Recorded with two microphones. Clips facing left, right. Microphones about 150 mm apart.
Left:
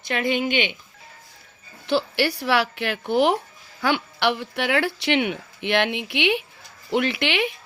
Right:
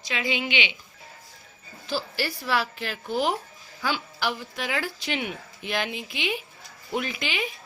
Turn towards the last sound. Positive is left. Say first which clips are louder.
# left 7 dB
turn(degrees=70)  # may be behind; listen again after turning